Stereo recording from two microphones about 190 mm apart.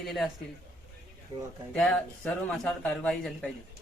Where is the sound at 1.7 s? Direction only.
5° left (ahead or behind).